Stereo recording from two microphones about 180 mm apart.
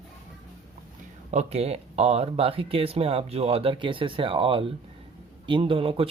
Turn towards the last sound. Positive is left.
turn(degrees=-30)  # may be behind; listen again after turning